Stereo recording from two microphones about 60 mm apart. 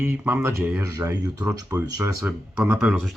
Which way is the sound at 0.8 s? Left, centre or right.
Right.